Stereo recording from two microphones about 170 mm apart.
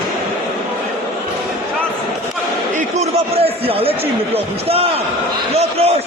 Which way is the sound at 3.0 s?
35° right (ahead or behind).